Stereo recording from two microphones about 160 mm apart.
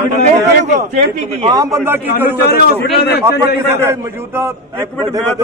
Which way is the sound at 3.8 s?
15° right (ahead or behind).